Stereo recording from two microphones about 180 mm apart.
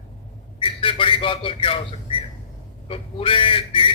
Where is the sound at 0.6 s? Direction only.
30° left (ahead or behind).